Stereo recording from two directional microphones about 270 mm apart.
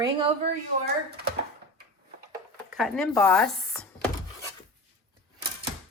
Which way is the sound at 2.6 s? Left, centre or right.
Centre.